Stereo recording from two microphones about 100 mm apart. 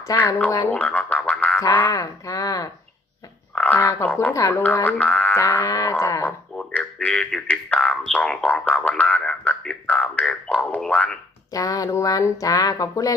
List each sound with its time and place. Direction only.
0.1 s speech: 40° left (ahead or behind)
0.6 s music: 15° left (ahead or behind)
1.9 s speech: 35° left (ahead or behind)
3.5 s speech: 15° left (ahead or behind)
4.4 s speech: 35° left (ahead or behind)
4.6 s speech: 15° left (ahead or behind)
5.6 s speech: 35° left (ahead or behind)
6.6 s speech: 10° left (ahead or behind)
11.5 s speech: 35° left (ahead or behind)